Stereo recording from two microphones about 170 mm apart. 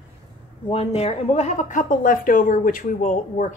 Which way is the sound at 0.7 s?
35° left (ahead or behind).